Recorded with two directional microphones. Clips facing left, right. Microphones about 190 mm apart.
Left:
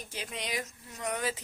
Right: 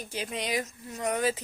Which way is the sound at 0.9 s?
45° right (ahead or behind).